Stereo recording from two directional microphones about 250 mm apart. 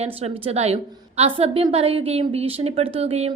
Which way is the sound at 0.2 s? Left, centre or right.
Right.